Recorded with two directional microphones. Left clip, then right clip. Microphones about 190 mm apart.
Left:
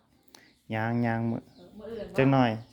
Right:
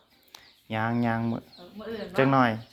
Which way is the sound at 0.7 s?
25° left (ahead or behind).